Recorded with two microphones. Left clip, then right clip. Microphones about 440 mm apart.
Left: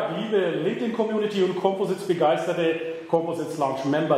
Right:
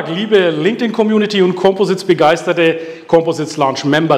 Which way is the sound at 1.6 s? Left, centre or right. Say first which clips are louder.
Right 11 dB; right.